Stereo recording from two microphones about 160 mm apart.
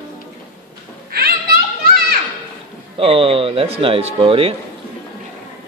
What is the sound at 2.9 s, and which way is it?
Speech, 35° right (ahead or behind).